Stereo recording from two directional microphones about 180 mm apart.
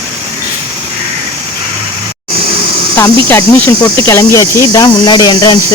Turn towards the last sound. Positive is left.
turn(degrees=20)  # may be behind; listen again after turning